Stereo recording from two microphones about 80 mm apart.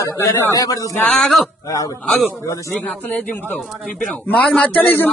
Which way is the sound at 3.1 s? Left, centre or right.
Centre.